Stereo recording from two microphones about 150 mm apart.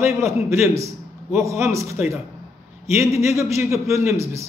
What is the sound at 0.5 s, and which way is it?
A man's voice, 15° right (ahead or behind).